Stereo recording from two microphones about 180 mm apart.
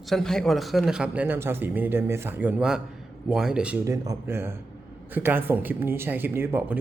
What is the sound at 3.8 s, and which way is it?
Speech, 20° right (ahead or behind).